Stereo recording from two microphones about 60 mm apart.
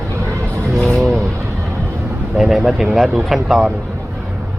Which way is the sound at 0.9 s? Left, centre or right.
Centre.